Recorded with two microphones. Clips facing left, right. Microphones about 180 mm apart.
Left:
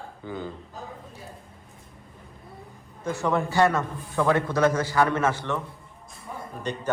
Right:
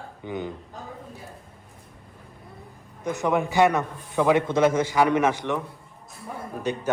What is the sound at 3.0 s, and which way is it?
Speech, 15° right (ahead or behind).